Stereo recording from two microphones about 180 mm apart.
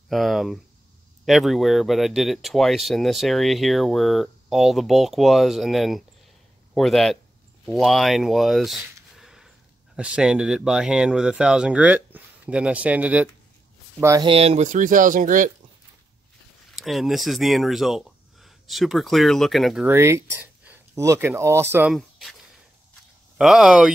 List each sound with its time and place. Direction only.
0.1 s speech: centre (ahead or behind); by 14.2 s 15° right (ahead or behind)
14.2 s speech: 35° right (ahead or behind)
16.7 s speech: centre (ahead or behind)
19.9 s speech: 15° right (ahead or behind)
23.3 s speech: centre (ahead or behind)